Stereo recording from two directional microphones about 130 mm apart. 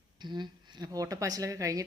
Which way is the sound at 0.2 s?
35° right (ahead or behind).